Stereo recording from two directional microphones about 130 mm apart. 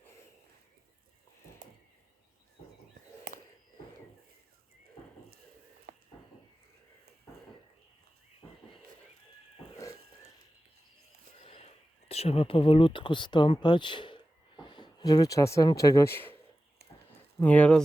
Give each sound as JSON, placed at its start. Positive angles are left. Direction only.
{"t": 8.4, "sound": "a sound", "side_deg": 25}
{"t": 11.4, "sound": "speech", "side_deg": 50}
{"t": 17.4, "sound": "speech", "side_deg": 10}